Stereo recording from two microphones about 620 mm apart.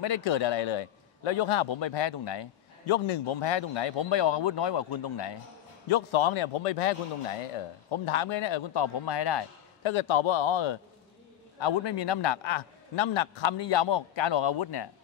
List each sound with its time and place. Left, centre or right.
0.0 s a man's voice: left
5.9 s a man's voice: left